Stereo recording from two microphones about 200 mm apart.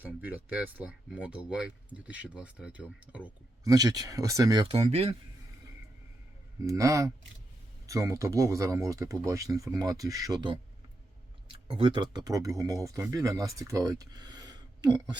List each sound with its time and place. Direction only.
0.0 s speech: 10° right (ahead or behind)
3.6 s speech: 20° right (ahead or behind)
6.7 s speech: 15° right (ahead or behind)